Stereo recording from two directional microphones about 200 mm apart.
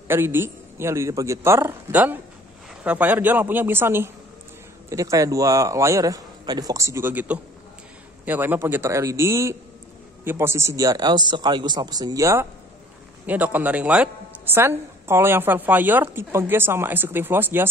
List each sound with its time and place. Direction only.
0.1 s a woman's voice: 10° right (ahead or behind)